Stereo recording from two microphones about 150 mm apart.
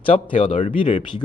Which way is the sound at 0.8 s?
45° left (ahead or behind).